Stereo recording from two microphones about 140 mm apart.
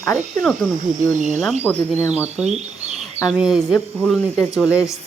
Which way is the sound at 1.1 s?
60° right (ahead or behind).